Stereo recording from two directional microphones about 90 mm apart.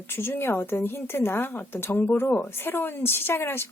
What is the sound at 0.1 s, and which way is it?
A woman's voice, 25° left (ahead or behind).